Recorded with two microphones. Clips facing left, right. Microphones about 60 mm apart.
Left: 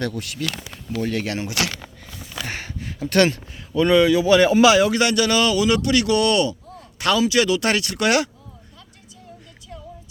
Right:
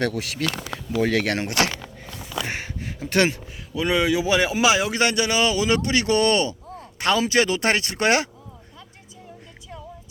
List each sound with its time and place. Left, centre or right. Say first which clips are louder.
0.0 s speech: right 2 dB; right
1.1 s speech: right 3 dB; right
2.4 s a sound: even; centre
3.8 s speech: left 5 dB; centre; by 8.3 s right